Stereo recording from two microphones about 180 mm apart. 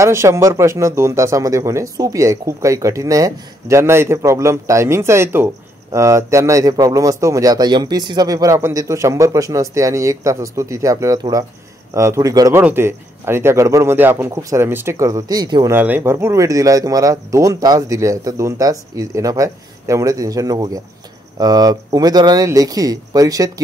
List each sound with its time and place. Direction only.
0.0 s speech: 15° right (ahead or behind)
15.7 s speech: 10° right (ahead or behind)